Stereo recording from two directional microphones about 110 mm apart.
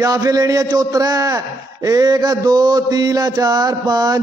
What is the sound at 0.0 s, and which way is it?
A man's voice, 30° right (ahead or behind).